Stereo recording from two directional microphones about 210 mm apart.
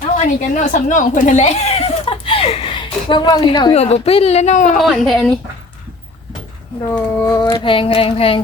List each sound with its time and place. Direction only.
0.2 s speech: 40° left (ahead or behind)
4.8 s speech: centre (ahead or behind)
6.9 s a sound: 20° left (ahead or behind)